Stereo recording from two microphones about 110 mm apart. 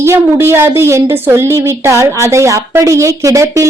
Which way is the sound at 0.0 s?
25° right (ahead or behind).